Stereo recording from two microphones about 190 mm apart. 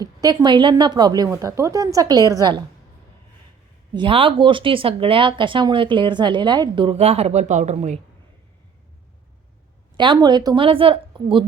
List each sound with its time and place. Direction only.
0.0 s speech: 20° right (ahead or behind)
3.9 s speech: 25° right (ahead or behind)
10.0 s speech: 25° right (ahead or behind)